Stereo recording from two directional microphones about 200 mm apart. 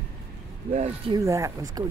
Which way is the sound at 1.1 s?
15° right (ahead or behind).